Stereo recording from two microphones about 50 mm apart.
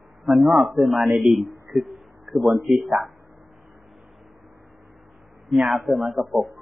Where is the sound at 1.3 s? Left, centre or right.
Centre.